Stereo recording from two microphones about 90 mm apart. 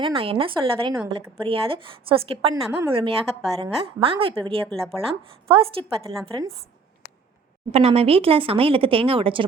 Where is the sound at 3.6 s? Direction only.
90° right.